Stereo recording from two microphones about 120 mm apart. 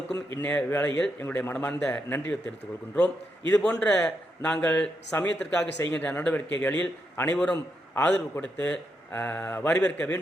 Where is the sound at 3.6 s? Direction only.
10° left (ahead or behind).